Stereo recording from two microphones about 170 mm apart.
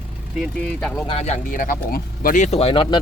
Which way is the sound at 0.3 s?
5° left (ahead or behind).